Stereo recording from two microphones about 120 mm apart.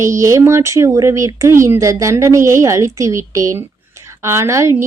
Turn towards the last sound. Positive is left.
turn(degrees=-25)  # may be behind; listen again after turning